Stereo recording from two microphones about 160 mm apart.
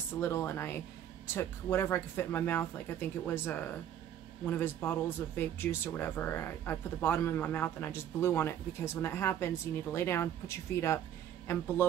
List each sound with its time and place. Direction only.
0.2 s speech: 15° left (ahead or behind)